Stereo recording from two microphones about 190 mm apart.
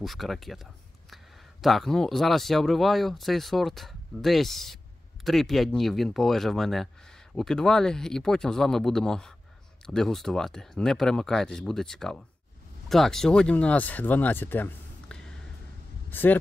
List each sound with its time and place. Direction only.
0.0 s speech: centre (ahead or behind)